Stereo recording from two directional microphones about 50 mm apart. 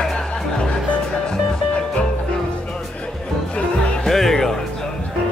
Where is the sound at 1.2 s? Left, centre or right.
Left.